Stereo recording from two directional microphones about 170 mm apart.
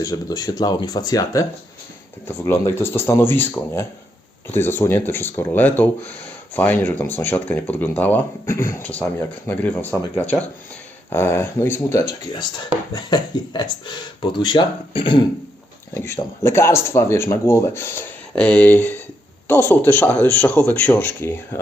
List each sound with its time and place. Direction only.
0.0 s speech: 20° left (ahead or behind)
16.0 s speech: 15° left (ahead or behind)